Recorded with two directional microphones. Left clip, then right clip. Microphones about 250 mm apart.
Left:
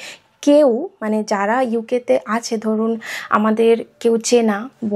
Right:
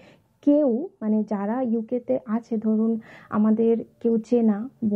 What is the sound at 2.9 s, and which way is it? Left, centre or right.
Speech, centre.